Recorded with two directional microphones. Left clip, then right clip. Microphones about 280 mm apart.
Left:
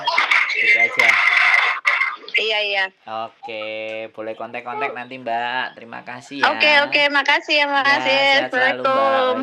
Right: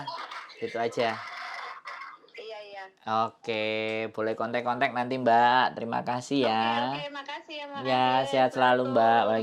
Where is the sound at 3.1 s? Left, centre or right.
Right.